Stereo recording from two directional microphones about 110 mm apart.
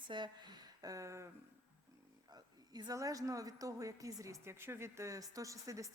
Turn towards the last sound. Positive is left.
turn(degrees=-30)  # may be behind; listen again after turning